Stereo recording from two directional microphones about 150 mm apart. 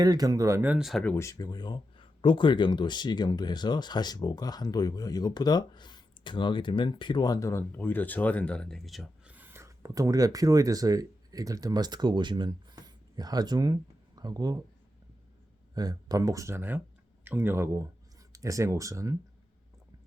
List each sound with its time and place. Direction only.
0.0 s speech: 25° right (ahead or behind)
0.9 s speech: 5° left (ahead or behind)
1.1 s speech: 20° left (ahead or behind); by 9.3 s centre (ahead or behind)
9.3 s speech: 15° right (ahead or behind)
15.7 s speech: 25° right (ahead or behind)